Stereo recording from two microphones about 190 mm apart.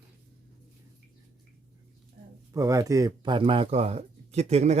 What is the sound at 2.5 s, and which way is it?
Speech, 15° right (ahead or behind).